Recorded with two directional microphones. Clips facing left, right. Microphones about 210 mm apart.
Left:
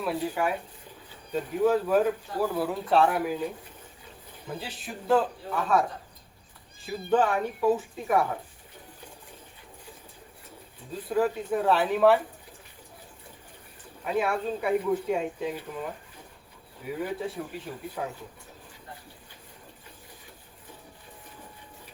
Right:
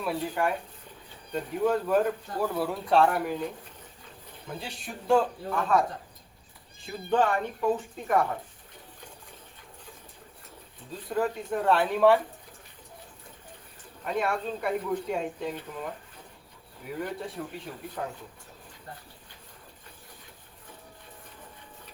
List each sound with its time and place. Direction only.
0.0 s speech: 5° left (ahead or behind)
6.8 s speech: 5° left (ahead or behind)
11.1 s speech: 5° left (ahead or behind)
14.0 s speech: 5° left (ahead or behind)